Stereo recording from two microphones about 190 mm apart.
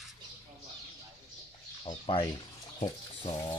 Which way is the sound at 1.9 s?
25° left (ahead or behind).